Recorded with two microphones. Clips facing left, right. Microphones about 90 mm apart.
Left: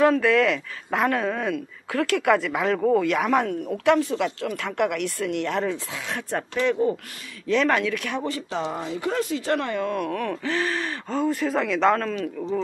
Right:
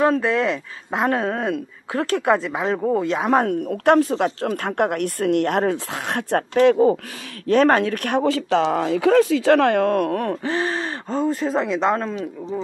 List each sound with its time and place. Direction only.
0.0 s speech: 25° right (ahead or behind)
3.7 s speech: 50° right (ahead or behind)
7.4 s speech: 45° right (ahead or behind)
8.2 s speech: 90° right; by 10.3 s 50° right (ahead or behind)
10.4 s speech: 30° right (ahead or behind)